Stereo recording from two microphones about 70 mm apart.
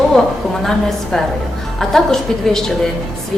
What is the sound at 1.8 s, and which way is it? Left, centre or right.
Speech, centre.